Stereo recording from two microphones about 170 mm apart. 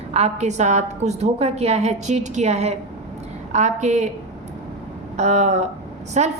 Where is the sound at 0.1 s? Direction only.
40° right (ahead or behind).